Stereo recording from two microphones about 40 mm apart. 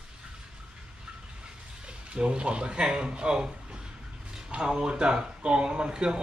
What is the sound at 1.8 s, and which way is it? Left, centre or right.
Speech, right.